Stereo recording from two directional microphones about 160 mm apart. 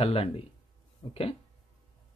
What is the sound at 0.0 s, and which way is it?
Speech, 40° left (ahead or behind).